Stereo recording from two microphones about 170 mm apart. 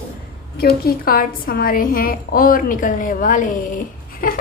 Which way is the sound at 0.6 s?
65° left (ahead or behind).